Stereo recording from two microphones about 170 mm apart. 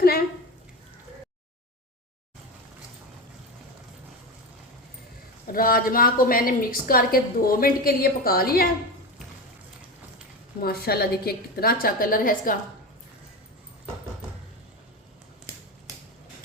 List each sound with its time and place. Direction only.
0.0 s a sound: 60° left (ahead or behind)
5.5 s a woman's voice: 60° left (ahead or behind)
10.6 s a woman's voice: 65° left (ahead or behind)